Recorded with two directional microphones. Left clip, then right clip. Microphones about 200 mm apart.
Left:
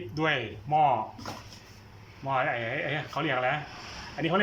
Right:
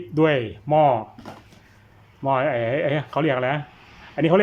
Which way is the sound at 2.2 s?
30° right (ahead or behind).